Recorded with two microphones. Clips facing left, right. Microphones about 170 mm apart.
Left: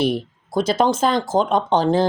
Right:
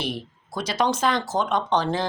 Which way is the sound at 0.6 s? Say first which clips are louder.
Left 5 dB; 50° left (ahead or behind).